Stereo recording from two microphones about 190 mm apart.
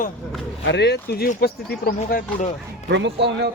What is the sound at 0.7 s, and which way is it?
Speech, 60° left (ahead or behind).